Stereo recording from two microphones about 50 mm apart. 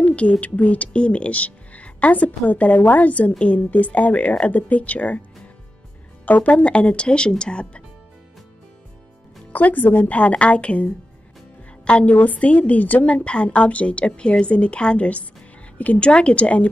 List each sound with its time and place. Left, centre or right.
0.0 s speech: left
6.2 s speech: left
9.5 s speech: left
10.0 s a woman's voice: left
12.1 s speech: left
16.1 s speech: left